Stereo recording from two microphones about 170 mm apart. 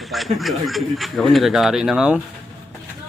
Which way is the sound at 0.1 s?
Centre (ahead or behind).